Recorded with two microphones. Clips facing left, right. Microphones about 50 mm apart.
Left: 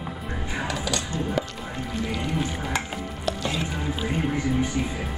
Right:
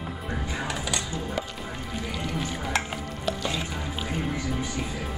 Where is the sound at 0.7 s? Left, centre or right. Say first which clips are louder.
Left 4 dB; right.